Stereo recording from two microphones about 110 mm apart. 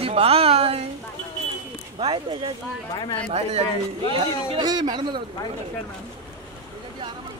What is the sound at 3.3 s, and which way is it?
Speech, 75° right (ahead or behind).